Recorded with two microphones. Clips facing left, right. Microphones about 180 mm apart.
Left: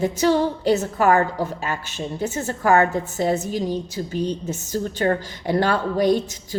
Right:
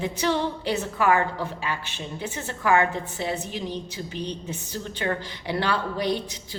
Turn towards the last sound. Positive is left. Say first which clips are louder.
# left 7 dB
turn(degrees=45)  # may be behind; listen again after turning